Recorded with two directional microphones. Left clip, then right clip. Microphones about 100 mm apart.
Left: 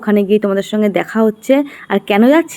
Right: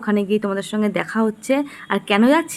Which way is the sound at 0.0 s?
30° left (ahead or behind).